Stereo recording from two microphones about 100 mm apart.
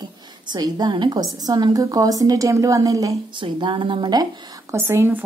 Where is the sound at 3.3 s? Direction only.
55° right (ahead or behind).